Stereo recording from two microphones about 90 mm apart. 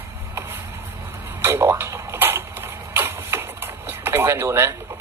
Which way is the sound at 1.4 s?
25° right (ahead or behind).